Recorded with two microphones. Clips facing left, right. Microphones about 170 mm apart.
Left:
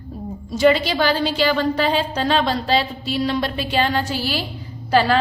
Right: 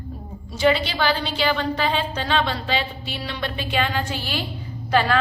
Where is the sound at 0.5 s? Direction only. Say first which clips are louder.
Left 4 dB; 40° left (ahead or behind).